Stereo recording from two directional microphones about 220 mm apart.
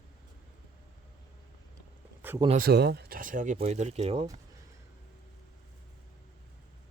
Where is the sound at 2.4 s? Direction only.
40° right (ahead or behind).